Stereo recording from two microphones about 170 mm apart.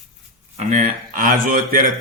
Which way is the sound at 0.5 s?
45° right (ahead or behind).